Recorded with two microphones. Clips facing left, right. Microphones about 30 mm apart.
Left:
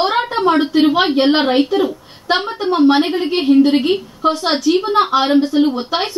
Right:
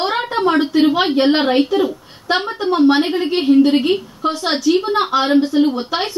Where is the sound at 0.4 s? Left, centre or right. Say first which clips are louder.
Even; left.